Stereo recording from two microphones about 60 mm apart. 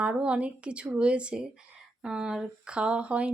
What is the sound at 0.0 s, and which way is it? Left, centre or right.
Speech, centre.